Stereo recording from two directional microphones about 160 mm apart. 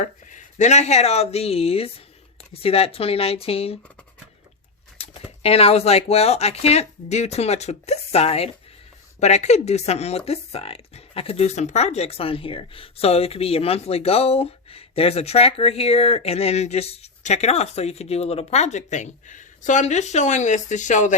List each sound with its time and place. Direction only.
0.0 s speech: 50° left (ahead or behind)
5.0 s bird: 40° left (ahead or behind)
5.4 s speech: 40° left (ahead or behind)